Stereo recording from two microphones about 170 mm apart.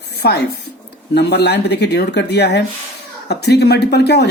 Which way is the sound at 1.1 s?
80° left.